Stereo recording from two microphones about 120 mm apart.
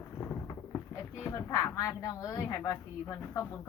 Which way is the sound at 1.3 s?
25° left (ahead or behind).